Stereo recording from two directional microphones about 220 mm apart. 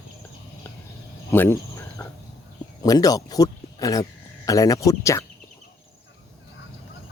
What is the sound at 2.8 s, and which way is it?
Speech, 15° left (ahead or behind).